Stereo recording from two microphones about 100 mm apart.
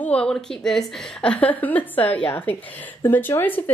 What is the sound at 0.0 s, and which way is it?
A woman's voice, 10° left (ahead or behind).